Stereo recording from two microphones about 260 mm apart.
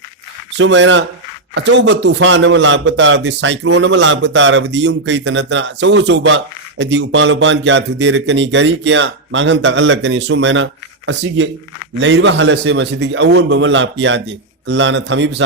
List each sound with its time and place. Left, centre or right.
0.5 s a man's voice: right